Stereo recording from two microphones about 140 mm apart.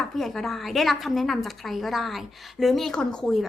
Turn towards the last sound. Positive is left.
turn(degrees=5)  # may be behind; listen again after turning